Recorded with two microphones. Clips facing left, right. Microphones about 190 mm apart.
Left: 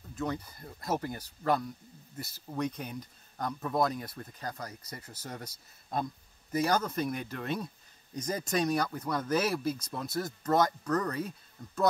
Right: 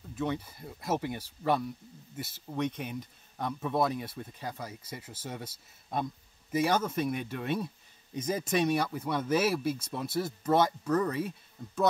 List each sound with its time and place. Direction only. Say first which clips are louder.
0.1 s speech: right 2 dB; 5° right (ahead or behind)